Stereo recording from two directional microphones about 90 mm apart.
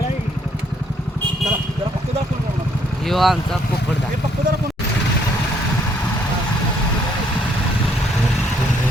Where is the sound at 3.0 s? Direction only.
Centre (ahead or behind).